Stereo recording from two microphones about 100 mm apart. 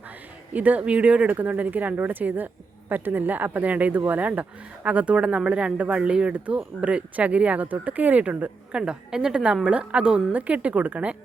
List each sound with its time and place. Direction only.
0.5 s speech: 15° right (ahead or behind)